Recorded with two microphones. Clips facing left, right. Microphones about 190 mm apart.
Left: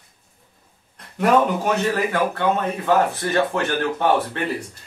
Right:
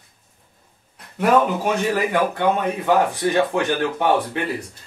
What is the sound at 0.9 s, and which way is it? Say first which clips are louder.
Speech: even; 5° right (ahead or behind).